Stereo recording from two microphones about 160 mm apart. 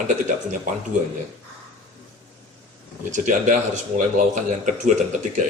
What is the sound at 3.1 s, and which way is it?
Speech, 50° right (ahead or behind).